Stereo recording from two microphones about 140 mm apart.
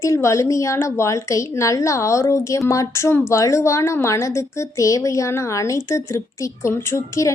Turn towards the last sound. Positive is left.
turn(degrees=20)  # may be behind; listen again after turning